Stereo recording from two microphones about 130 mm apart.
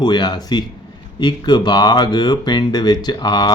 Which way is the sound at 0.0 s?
35° left (ahead or behind).